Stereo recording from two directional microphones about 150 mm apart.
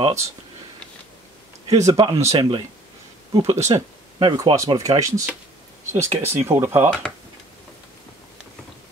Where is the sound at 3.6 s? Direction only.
20° right (ahead or behind).